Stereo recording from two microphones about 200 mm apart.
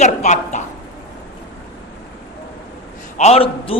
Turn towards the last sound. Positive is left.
turn(degrees=30)  # may be behind; listen again after turning